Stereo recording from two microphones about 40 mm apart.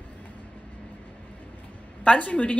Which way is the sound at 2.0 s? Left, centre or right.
Left.